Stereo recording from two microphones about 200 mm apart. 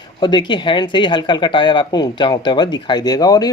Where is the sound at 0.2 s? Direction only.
20° left (ahead or behind).